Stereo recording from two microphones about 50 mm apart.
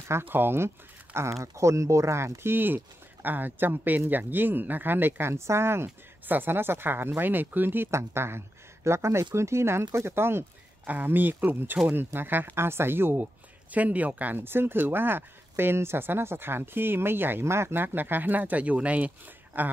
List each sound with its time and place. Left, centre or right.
0.2 s speech: right
1.4 s speech: right
5.3 s speech: right
6.2 s speech: right
7.9 s speech: right
10.9 s speech: right
13.7 s speech: right
14.4 s speech: right